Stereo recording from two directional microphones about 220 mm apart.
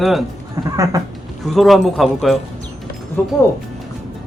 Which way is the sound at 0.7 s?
15° right (ahead or behind).